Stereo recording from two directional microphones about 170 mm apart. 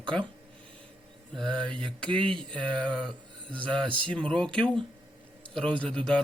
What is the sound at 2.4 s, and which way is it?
Speech, 5° left (ahead or behind).